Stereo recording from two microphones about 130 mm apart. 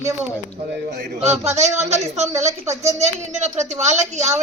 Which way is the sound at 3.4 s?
60° right (ahead or behind).